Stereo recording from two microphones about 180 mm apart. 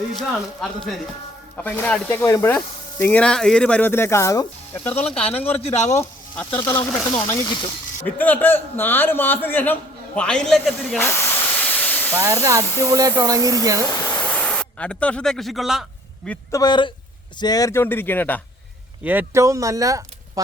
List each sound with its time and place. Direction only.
0.2 s speech: centre (ahead or behind)
5.5 s speech: 40° left (ahead or behind)
6.0 s speech: 10° left (ahead or behind)
8.0 s speech: 10° left (ahead or behind)
10.2 s hiss: 5° left (ahead or behind)
12.1 s speech: 15° right (ahead or behind)
13.9 s speech: 10° left (ahead or behind)
16.5 s a man's voice: 20° left (ahead or behind)
19.0 s speech: 15° right (ahead or behind)